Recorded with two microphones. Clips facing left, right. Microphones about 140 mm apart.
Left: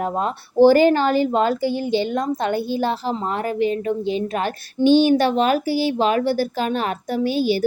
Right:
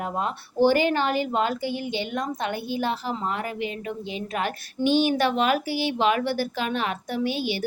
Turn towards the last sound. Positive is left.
turn(degrees=40)  # may be behind; listen again after turning